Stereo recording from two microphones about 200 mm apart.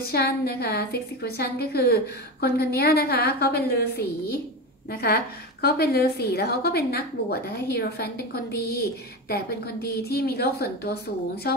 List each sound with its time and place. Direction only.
0.1 s a woman's voice: 50° left (ahead or behind)
5.0 s a woman's voice: 50° left (ahead or behind)